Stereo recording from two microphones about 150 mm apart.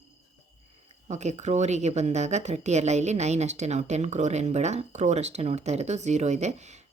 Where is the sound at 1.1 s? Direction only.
50° right (ahead or behind).